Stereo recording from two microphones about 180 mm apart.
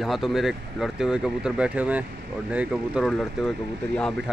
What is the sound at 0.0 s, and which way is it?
Speech, centre (ahead or behind).